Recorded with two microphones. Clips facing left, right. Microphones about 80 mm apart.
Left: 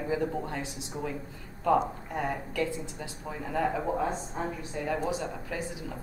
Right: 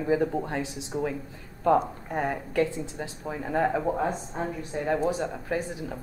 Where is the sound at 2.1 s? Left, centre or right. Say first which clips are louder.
Right 5 dB; right.